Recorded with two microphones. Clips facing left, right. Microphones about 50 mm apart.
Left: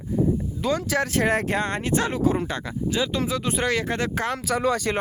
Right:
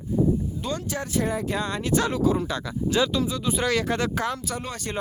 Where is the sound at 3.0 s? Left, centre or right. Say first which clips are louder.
Right 3 dB; centre.